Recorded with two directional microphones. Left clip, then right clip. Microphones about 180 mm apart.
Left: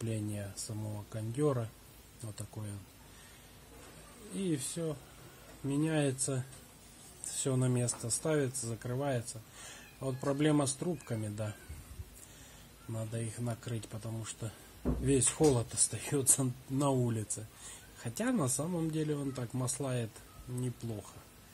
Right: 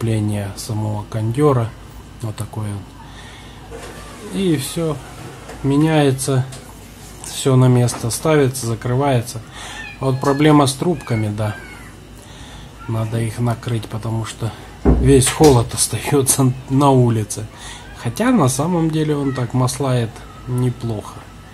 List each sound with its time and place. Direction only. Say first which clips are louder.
0.0 s speech: right 17 dB; 20° left (ahead or behind)
4.4 s speech: right 17 dB; 20° left (ahead or behind)
7.4 s speech: right 19 dB; 25° left (ahead or behind)
12.9 s speech: right 17 dB; 25° left (ahead or behind)